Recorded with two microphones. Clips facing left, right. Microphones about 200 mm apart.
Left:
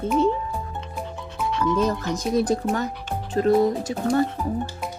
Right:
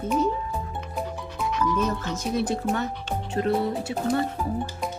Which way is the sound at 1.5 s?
30° left (ahead or behind).